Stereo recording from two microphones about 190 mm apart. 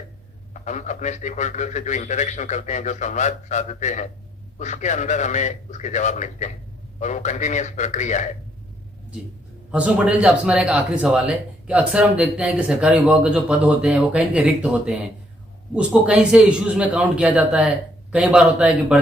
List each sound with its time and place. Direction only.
0.6 s a man's voice: 40° left (ahead or behind)
9.7 s a man's voice: 5° right (ahead or behind)